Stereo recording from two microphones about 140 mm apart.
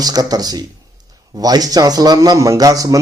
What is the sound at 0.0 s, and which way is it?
A man's voice, 25° right (ahead or behind).